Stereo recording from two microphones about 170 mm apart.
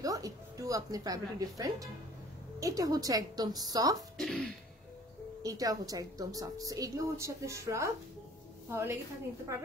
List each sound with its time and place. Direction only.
0.0 s a woman's voice: 20° right (ahead or behind)
4.2 s throat clearing: 5° left (ahead or behind)
5.4 s a woman's voice: 20° right (ahead or behind)